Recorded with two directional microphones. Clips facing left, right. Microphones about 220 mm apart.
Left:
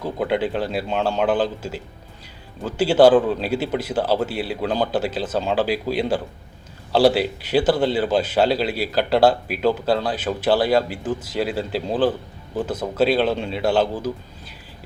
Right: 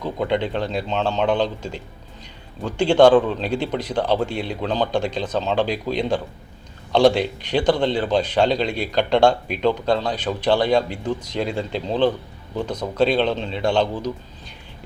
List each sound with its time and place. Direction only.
0.0 s a man's voice: 5° left (ahead or behind)